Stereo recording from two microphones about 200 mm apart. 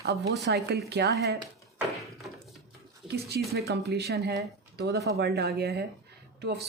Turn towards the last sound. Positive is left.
turn(degrees=-55)  # may be behind; listen again after turning